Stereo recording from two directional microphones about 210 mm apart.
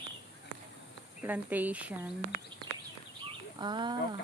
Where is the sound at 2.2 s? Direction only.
45° right (ahead or behind).